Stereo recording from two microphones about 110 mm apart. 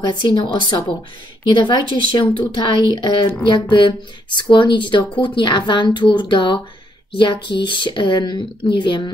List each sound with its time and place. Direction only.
0.0 s speech: 45° left (ahead or behind)